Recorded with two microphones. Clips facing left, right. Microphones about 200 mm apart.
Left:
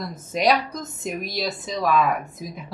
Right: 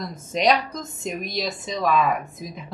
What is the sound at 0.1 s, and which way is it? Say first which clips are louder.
A woman's voice: even; 5° left (ahead or behind).